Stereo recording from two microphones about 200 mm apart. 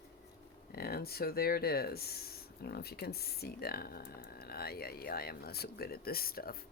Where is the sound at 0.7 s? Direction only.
50° left (ahead or behind).